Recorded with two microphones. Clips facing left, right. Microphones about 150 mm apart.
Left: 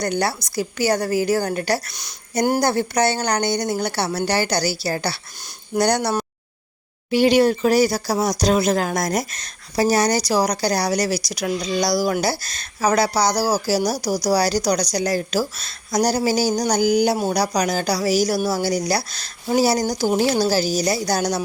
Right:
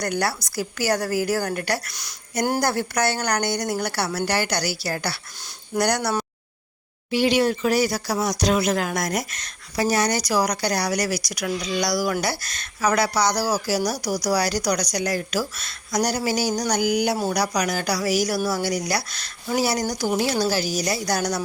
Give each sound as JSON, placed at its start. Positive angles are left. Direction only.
{"t": 0.0, "sound": "speech", "side_deg": 25}
{"t": 7.1, "sound": "speech", "side_deg": 45}